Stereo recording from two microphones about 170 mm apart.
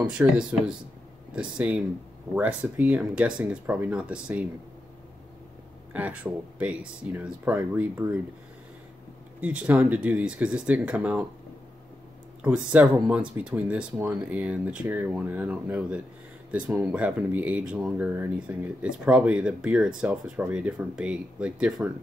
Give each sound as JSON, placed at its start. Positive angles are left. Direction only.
{"t": 0.1, "sound": "speech", "side_deg": -5}
{"t": 5.9, "sound": "speech", "side_deg": -10}
{"t": 9.4, "sound": "speech", "side_deg": -10}
{"t": 12.4, "sound": "speech", "side_deg": -10}
{"t": 13.9, "sound": "speech", "side_deg": -15}